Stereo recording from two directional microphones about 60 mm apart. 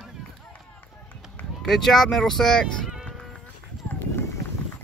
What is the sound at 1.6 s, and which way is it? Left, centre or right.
Speech, centre.